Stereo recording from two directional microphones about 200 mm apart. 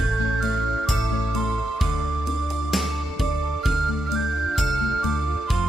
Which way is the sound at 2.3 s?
Centre (ahead or behind).